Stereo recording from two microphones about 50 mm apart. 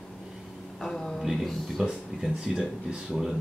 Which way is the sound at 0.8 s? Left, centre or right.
Centre.